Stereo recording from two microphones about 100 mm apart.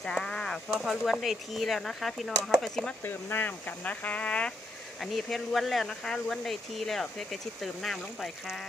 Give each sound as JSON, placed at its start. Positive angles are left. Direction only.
{"t": 0.0, "sound": "speech", "side_deg": 5}
{"t": 3.0, "sound": "speech", "side_deg": 20}